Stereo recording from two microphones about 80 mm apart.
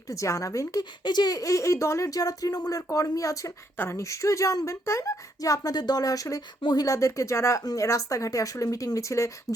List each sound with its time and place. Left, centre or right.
0.1 s speech: left
1.0 s speech: left